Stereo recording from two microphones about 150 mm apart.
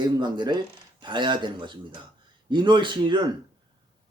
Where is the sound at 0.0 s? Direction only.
30° right (ahead or behind).